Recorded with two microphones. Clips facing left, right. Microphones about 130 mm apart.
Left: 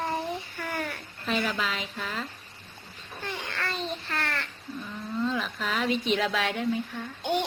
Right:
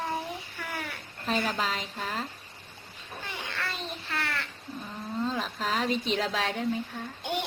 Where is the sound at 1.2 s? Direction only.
40° right (ahead or behind).